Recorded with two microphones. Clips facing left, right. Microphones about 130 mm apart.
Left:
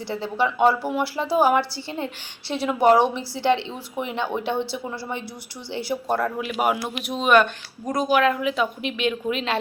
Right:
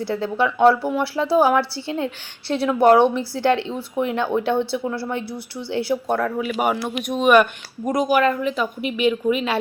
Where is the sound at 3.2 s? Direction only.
55° right (ahead or behind).